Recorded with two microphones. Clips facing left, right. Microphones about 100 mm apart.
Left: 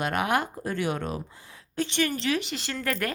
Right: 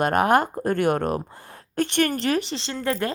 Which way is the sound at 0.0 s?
45° right (ahead or behind).